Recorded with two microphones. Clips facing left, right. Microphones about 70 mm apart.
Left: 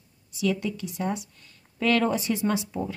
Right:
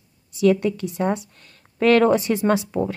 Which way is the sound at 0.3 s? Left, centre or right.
Right.